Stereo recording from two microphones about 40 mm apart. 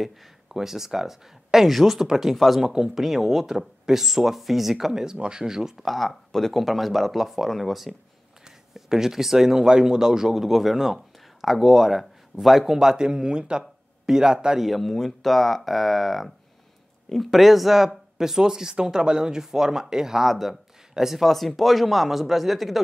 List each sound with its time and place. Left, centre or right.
0.0 s a man's voice: centre
2.6 s a man's voice: centre
5.1 s speech: right
5.4 s a man's voice: centre
5.8 s speech: centre
8.7 s a man's voice: centre
14.6 s a man's voice: centre